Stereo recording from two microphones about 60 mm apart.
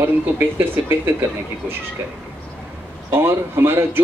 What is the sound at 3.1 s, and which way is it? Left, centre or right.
Speech, right.